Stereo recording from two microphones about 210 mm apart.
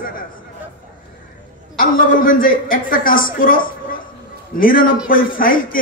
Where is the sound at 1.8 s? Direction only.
40° left (ahead or behind).